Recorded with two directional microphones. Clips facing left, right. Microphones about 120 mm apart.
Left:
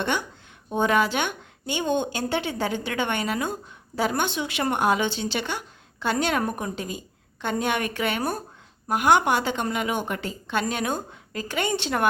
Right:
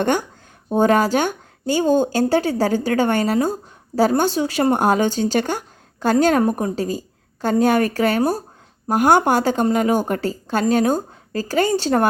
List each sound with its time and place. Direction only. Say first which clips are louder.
0.0 s a woman's voice: right 7 dB; 45° right (ahead or behind)